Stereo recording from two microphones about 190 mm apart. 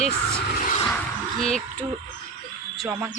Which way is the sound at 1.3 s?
5° left (ahead or behind).